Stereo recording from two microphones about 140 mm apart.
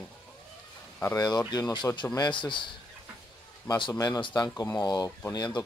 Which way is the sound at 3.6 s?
35° left (ahead or behind).